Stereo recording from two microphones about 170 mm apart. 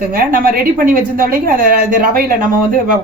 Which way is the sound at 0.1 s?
55° right (ahead or behind).